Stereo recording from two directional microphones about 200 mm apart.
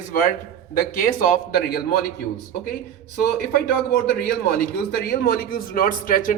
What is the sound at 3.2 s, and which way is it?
A man's voice, 50° left (ahead or behind).